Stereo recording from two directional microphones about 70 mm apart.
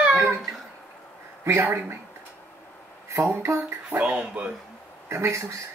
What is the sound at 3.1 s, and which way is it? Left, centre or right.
Speech, right.